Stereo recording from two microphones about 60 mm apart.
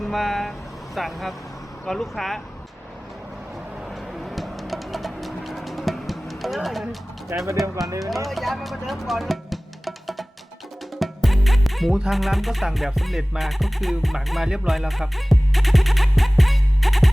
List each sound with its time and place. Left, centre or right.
0.0 s speech: centre
0.9 s music: centre
3.8 s music: centre
7.3 s speech: right
8.1 s music: centre
14.4 s music: centre
14.7 s music: centre